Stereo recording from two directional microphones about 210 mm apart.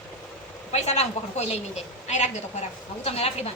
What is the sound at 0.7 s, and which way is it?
Speech, 30° left (ahead or behind).